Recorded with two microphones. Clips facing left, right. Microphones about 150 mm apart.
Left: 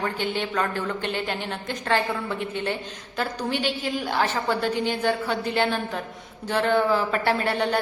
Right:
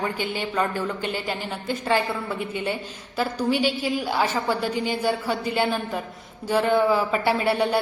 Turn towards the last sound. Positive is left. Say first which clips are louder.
# right 2 dB
turn(degrees=-10)  # may be behind; listen again after turning